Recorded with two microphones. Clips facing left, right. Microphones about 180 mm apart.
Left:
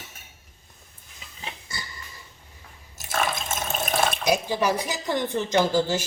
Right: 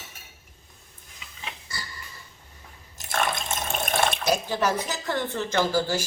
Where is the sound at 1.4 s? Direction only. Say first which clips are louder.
Left 1 dB; 25° left (ahead or behind).